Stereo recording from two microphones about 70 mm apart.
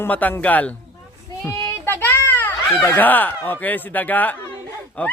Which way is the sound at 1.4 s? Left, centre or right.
Left.